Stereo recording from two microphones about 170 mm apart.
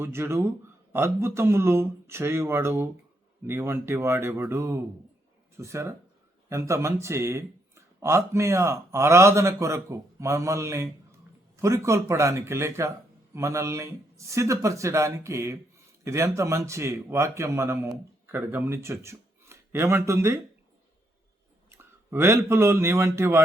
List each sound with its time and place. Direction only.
0.0 s a man's voice: 15° right (ahead or behind)
21.7 s a man's voice: 15° right (ahead or behind)